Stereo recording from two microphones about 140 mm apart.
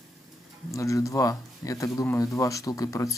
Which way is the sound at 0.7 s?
20° left (ahead or behind).